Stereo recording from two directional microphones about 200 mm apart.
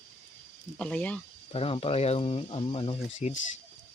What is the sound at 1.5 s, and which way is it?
Speech, 30° left (ahead or behind).